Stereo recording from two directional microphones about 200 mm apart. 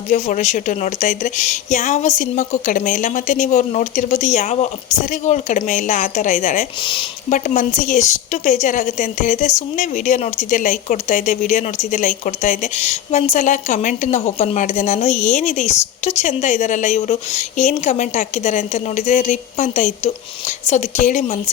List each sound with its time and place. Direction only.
0.1 s a woman's voice: 40° left (ahead or behind)